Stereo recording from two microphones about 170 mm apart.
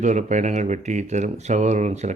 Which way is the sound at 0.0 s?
45° right (ahead or behind).